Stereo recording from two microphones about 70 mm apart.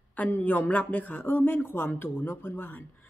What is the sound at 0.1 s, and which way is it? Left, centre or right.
Speech, left.